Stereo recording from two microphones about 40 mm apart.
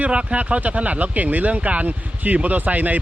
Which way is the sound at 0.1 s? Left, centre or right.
Right.